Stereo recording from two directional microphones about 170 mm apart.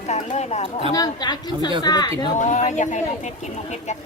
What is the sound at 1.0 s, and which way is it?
Speech, 25° left (ahead or behind).